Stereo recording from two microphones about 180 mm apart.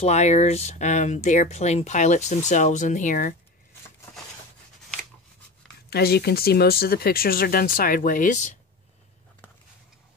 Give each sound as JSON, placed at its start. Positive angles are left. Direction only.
{"t": 0.0, "sound": "speech", "side_deg": 40}
{"t": 5.9, "sound": "speech", "side_deg": 60}